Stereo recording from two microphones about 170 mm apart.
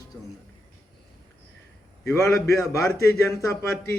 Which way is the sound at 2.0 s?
15° left (ahead or behind).